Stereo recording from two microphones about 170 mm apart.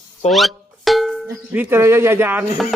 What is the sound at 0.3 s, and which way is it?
Music, centre (ahead or behind).